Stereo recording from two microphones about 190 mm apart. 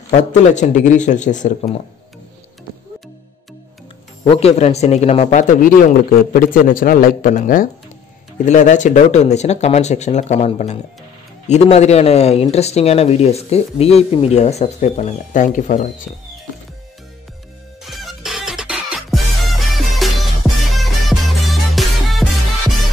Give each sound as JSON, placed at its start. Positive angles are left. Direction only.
{"t": 0.1, "sound": "speech", "side_deg": 40}
{"t": 4.2, "sound": "speech", "side_deg": 35}
{"t": 17.8, "sound": "music", "side_deg": 0}